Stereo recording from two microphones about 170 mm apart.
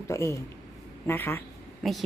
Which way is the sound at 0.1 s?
15° left (ahead or behind).